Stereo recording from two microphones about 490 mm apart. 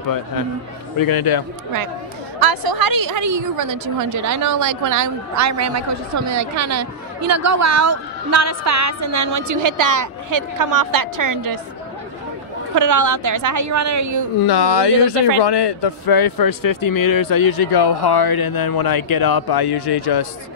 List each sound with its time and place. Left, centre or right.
0.9 s speech: left
2.4 s a woman's voice: right
12.7 s a woman's voice: right
14.4 s speech: left